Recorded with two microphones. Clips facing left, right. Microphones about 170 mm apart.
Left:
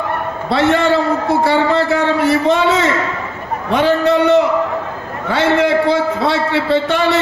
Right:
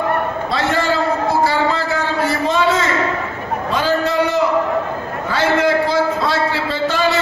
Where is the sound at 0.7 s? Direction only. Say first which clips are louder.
Left 3 dB; 70° left (ahead or behind).